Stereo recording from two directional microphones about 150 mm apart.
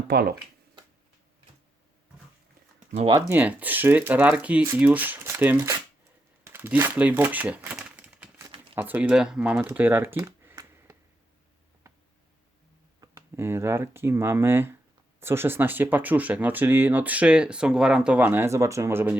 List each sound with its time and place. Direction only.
0.1 s speech: 90° right
2.9 s speech: 40° right (ahead or behind)
3.2 s speech: 15° right (ahead or behind)
6.4 s typewriter: 15° right (ahead or behind)
8.4 s crumpling: 25° right (ahead or behind)
8.7 s speech: 10° right (ahead or behind)
13.0 s speech: 20° right (ahead or behind)